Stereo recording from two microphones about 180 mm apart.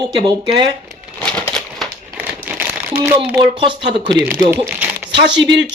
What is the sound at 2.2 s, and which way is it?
Crumpling, 10° right (ahead or behind).